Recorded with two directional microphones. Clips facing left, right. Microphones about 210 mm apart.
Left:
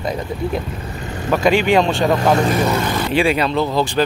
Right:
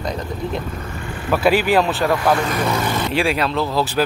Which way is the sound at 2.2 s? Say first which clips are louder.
Left 3 dB; 25° left (ahead or behind).